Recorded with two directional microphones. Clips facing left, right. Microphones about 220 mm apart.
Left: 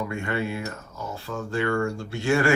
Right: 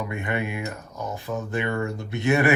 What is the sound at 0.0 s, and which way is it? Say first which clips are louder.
Speech: even; 20° right (ahead or behind).